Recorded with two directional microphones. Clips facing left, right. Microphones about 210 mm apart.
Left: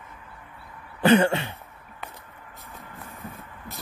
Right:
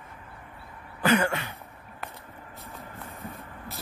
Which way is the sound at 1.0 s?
30° left (ahead or behind).